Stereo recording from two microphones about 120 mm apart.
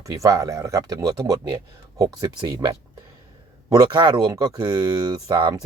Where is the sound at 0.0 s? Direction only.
25° right (ahead or behind).